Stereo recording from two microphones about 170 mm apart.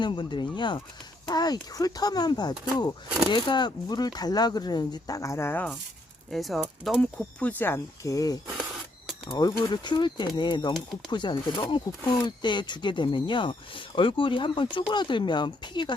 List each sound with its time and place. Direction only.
0.0 s speech: 25° left (ahead or behind); by 5.7 s 10° left (ahead or behind)
6.3 s speech: centre (ahead or behind); by 16.0 s 25° left (ahead or behind)